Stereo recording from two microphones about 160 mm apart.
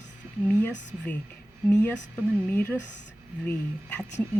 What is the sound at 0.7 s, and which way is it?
Speech, 90° left.